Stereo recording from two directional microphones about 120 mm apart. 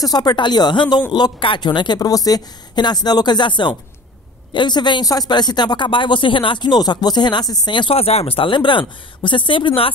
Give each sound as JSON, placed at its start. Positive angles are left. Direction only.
{"t": 0.0, "sound": "a man's voice", "side_deg": 35}
{"t": 7.9, "sound": "speech", "side_deg": 60}